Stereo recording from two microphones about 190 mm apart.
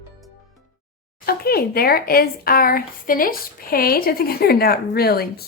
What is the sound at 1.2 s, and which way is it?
Speech, 55° left (ahead or behind).